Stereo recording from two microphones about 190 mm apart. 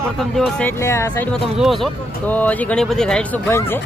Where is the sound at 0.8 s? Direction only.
15° left (ahead or behind).